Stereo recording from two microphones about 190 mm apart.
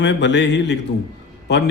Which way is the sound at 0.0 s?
70° left (ahead or behind).